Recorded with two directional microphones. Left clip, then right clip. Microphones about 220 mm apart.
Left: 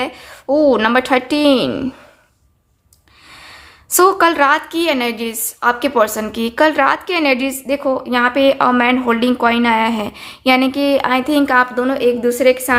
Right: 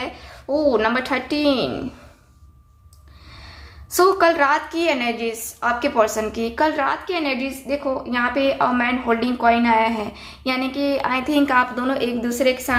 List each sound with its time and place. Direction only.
0.0 s a woman's voice: 35° left (ahead or behind)
3.4 s a woman's voice: 35° left (ahead or behind)